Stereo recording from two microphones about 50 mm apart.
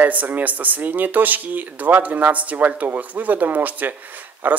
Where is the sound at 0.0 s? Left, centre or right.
Right.